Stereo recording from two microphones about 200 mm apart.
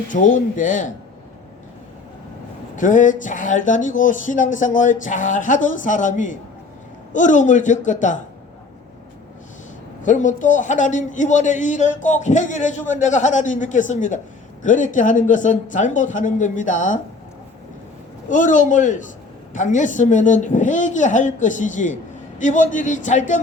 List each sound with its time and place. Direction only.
0.1 s speech: 40° left (ahead or behind)
2.7 s speech: 40° left (ahead or behind)
10.0 s speech: 40° left (ahead or behind)
18.3 s speech: 40° left (ahead or behind)